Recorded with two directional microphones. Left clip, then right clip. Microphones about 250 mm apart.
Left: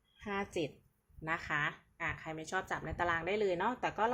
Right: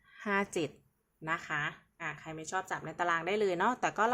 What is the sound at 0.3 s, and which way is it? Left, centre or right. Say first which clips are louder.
Speech: right 5 dB; centre.